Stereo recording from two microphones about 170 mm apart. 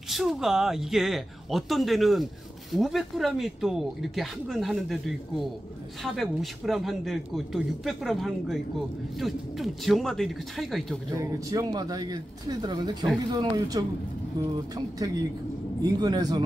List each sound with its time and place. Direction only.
0.1 s speech: centre (ahead or behind)
11.1 s speech: 20° right (ahead or behind)
15.8 s speech: 20° right (ahead or behind)